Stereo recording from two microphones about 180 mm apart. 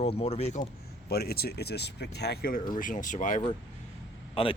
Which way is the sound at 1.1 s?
60° left (ahead or behind).